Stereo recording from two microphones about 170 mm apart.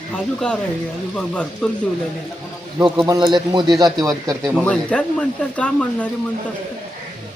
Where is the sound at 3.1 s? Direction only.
25° right (ahead or behind).